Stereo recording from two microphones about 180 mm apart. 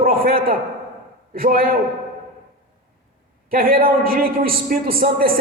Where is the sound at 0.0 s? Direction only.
55° right (ahead or behind).